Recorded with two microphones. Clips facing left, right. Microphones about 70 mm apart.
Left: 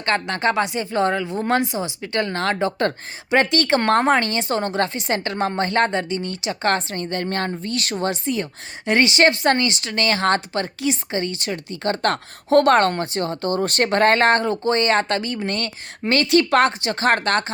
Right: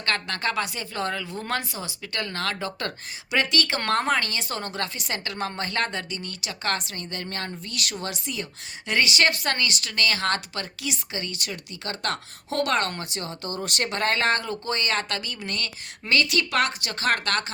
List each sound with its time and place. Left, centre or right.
0.0 s speech: left